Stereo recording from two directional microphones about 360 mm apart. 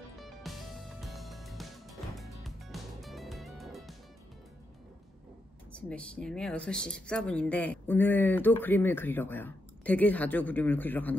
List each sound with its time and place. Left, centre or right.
0.2 s music: centre
5.7 s speech: centre